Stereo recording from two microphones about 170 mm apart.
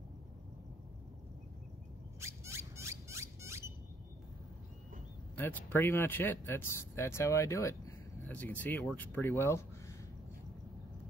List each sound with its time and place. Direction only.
2.1 s squeak: 15° right (ahead or behind)
5.4 s speech: 10° left (ahead or behind)